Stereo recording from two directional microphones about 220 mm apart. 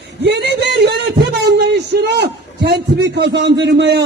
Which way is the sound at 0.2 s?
50° right (ahead or behind).